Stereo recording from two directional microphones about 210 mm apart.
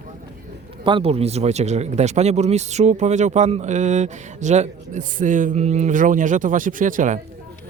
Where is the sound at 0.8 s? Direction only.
25° right (ahead or behind).